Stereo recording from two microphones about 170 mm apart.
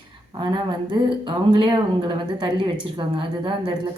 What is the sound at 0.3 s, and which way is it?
Speech, 25° right (ahead or behind).